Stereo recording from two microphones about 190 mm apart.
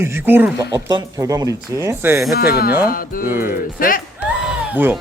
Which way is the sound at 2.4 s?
55° left (ahead or behind).